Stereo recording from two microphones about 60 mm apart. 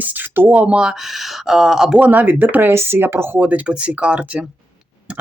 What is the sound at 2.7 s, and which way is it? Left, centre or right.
Speech, right.